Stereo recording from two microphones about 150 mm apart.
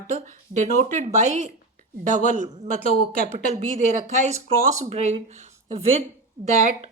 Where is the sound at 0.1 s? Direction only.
55° right (ahead or behind).